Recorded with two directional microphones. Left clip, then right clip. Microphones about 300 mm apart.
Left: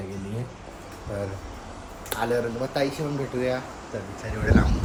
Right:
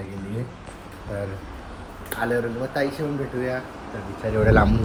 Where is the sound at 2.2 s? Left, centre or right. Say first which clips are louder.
Right 1 dB; centre.